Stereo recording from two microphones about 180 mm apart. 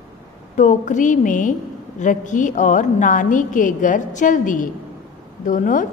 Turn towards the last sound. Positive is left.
turn(degrees=45)  # may be behind; listen again after turning